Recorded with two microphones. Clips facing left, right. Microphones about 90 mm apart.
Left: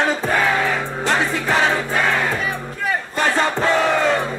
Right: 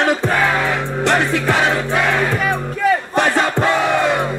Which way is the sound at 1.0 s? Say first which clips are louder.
Right 3 dB; 70° right (ahead or behind).